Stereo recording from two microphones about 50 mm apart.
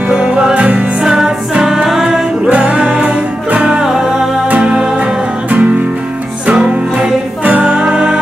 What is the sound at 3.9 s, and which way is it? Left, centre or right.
Music, centre.